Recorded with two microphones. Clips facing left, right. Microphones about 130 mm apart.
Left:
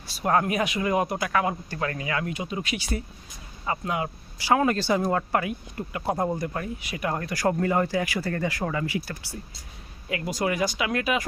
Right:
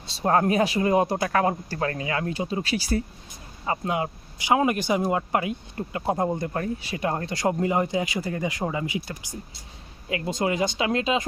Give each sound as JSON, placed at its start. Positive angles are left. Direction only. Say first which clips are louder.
{"t": 0.1, "sound": "speech", "louder": "right 2 dB", "side_deg": -30}